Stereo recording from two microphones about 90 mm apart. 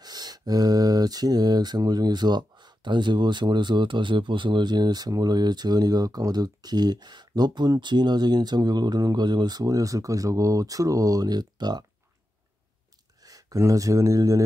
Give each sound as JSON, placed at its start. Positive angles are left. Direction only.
{"t": 0.0, "sound": "speech", "side_deg": -45}
{"t": 13.2, "sound": "speech", "side_deg": -40}